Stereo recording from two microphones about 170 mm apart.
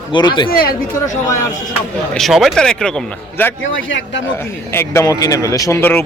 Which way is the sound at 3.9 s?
90° left.